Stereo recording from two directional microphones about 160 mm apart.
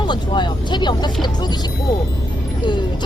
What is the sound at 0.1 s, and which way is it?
Speech, 30° left (ahead or behind).